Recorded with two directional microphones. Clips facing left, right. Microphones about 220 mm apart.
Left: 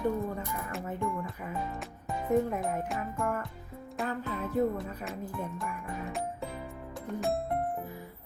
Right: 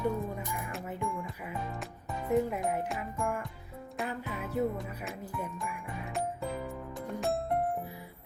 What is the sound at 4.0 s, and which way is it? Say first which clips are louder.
Music: left 3 dB; 10° right (ahead or behind).